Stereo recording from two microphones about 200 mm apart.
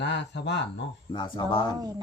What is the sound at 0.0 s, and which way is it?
Speech, 60° left (ahead or behind).